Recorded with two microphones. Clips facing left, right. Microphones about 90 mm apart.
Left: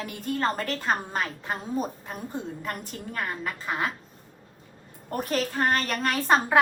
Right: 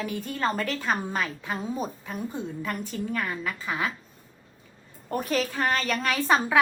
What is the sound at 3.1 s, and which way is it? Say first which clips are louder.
Speech: right 1 dB; 40° left (ahead or behind).